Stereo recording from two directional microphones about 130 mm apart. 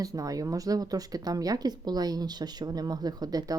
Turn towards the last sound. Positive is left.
turn(degrees=-30)  # may be behind; listen again after turning